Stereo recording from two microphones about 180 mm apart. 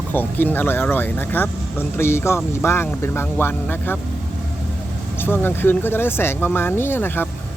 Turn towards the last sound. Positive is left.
turn(degrees=10)  # may be behind; listen again after turning